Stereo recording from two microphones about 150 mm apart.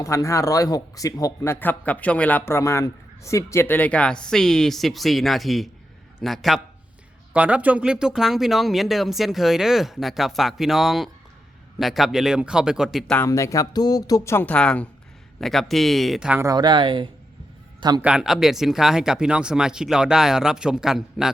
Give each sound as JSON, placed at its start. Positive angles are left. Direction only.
{"t": 0.0, "sound": "speech", "side_deg": 20}
{"t": 1.5, "sound": "a man's voice", "side_deg": 10}
{"t": 13.1, "sound": "speech", "side_deg": 20}
{"t": 16.4, "sound": "a man's voice", "side_deg": -25}
{"t": 18.0, "sound": "speech", "side_deg": -5}